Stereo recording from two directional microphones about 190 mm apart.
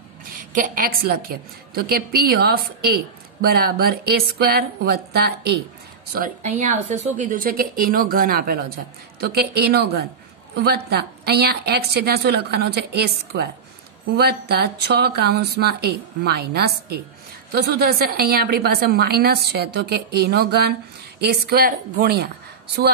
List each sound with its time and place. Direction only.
0.5 s a woman's voice: 45° right (ahead or behind)
6.1 s a woman's voice: 45° right (ahead or behind)